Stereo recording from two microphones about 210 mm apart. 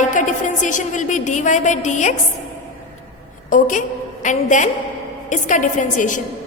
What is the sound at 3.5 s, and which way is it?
A woman's voice, 35° left (ahead or behind).